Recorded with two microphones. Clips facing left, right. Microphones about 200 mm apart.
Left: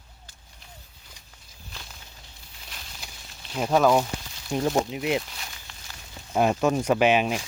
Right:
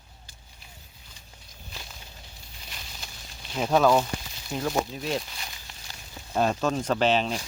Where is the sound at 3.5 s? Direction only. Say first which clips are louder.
Left 1 dB; centre (ahead or behind).